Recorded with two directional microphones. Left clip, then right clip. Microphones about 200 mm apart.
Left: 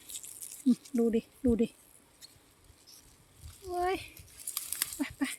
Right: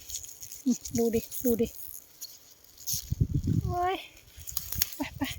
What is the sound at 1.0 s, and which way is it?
Speech, centre (ahead or behind).